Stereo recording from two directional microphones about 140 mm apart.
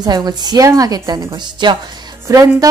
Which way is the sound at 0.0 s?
30° right (ahead or behind).